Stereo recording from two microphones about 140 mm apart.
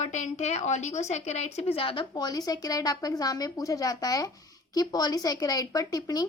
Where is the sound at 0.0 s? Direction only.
55° left (ahead or behind).